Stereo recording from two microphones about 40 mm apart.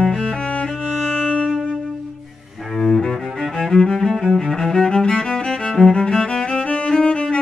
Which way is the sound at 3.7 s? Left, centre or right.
Centre.